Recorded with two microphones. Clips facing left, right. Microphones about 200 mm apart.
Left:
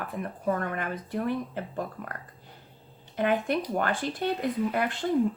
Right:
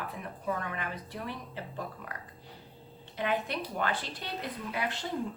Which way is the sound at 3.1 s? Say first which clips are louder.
Left 6 dB; 50° left (ahead or behind).